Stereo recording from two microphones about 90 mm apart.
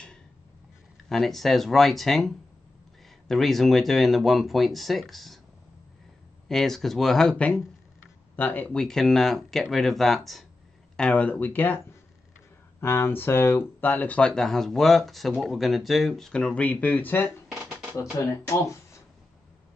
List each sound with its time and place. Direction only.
1.0 s speech: centre (ahead or behind)
6.5 s speech: 5° left (ahead or behind); by 8.7 s 20° left (ahead or behind)
8.7 s speech: 5° left (ahead or behind)
11.0 s speech: 15° left (ahead or behind)